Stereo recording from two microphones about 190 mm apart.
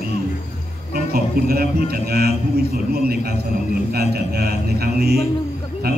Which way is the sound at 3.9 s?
55° right (ahead or behind).